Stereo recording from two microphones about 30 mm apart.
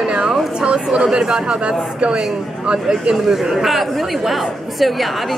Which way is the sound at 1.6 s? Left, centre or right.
Right.